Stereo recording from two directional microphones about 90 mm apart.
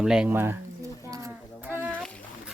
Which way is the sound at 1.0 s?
40° right (ahead or behind).